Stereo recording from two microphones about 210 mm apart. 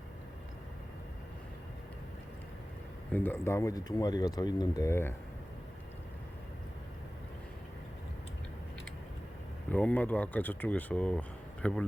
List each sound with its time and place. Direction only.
3.1 s speech: 10° left (ahead or behind)
9.7 s speech: 5° left (ahead or behind)